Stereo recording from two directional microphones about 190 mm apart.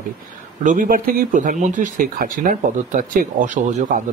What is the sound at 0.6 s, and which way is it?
Speech, 45° right (ahead or behind).